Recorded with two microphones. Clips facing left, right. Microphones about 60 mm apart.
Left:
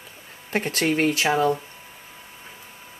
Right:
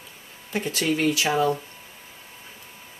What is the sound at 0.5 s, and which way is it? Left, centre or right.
Speech, left.